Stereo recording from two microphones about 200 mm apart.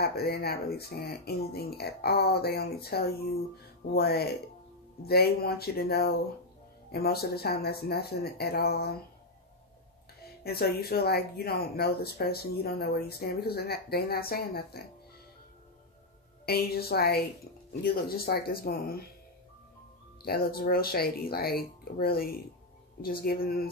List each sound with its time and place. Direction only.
0.0 s speech: 55° left (ahead or behind)
10.4 s speech: 50° left (ahead or behind)
16.4 s speech: 50° left (ahead or behind)
20.2 s speech: 50° left (ahead or behind)